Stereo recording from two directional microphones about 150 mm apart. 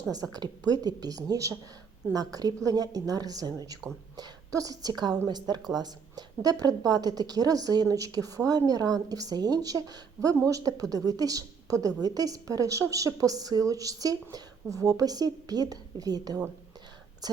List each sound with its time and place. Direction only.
0.3 s a woman's voice: 25° right (ahead or behind)